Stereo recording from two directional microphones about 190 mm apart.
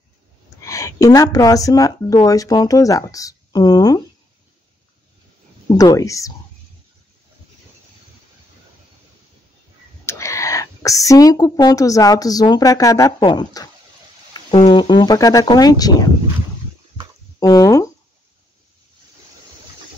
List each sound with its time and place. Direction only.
0.7 s speech: 15° left (ahead or behind)
5.8 s speech: 15° left (ahead or behind)
10.0 s speech: 15° left (ahead or behind)
14.7 s speech: 25° left (ahead or behind)
17.4 s speech: 15° left (ahead or behind)